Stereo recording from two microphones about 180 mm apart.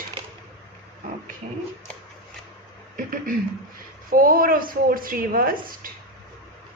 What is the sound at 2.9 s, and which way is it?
Speech, 50° right (ahead or behind).